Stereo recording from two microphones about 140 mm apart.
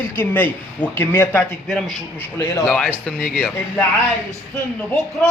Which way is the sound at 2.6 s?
5° left (ahead or behind).